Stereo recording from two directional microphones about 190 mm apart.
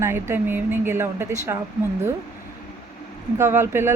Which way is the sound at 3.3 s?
15° right (ahead or behind).